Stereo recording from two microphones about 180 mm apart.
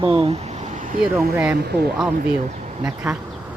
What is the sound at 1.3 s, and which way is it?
Speech, 10° right (ahead or behind).